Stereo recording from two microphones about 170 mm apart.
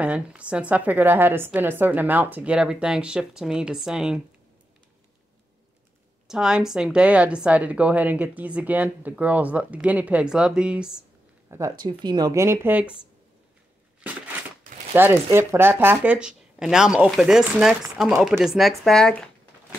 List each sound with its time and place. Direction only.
0.0 s speech: 5° right (ahead or behind)
6.2 s speech: 5° right (ahead or behind)
11.8 s speech: 25° right (ahead or behind)
15.0 s speech: 15° right (ahead or behind); by 19.2 s 5° left (ahead or behind)